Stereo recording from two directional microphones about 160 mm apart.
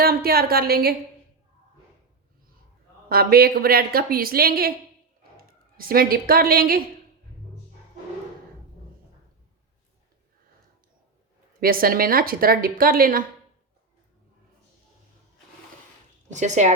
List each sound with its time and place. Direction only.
0.0 s a woman's voice: 70° right (ahead or behind)
3.1 s a woman's voice: 70° right (ahead or behind)
11.6 s a woman's voice: 65° right (ahead or behind)
16.3 s speech: 50° right (ahead or behind)